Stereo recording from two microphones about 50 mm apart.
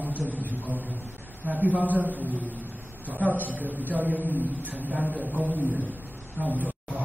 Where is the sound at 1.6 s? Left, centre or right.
Right.